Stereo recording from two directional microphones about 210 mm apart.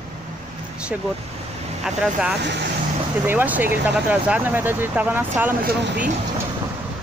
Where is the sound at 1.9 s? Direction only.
5° right (ahead or behind).